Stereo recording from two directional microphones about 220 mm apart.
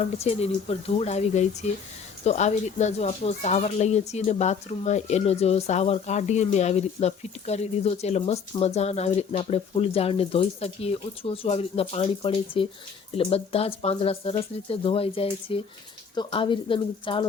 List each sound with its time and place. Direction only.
0.0 s speech: 30° left (ahead or behind)